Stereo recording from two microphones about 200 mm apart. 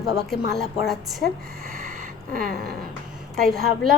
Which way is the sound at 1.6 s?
45° right (ahead or behind).